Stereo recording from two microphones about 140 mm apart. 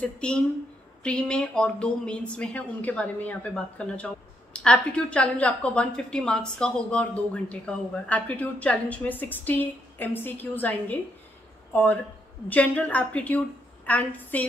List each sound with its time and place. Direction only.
0.0 s speech: 5° left (ahead or behind)